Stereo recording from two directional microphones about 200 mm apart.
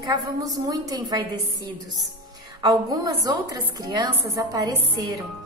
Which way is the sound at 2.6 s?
20° right (ahead or behind).